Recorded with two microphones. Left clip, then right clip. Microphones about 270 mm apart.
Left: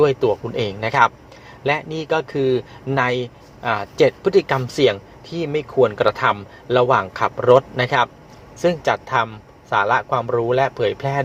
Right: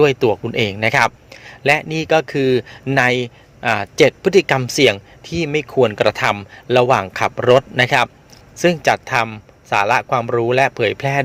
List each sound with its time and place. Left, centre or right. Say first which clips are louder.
0.0 s a man's voice: right 2 dB; right